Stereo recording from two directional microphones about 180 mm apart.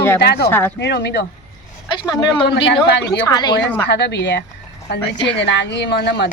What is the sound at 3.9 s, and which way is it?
Speech, 65° left (ahead or behind).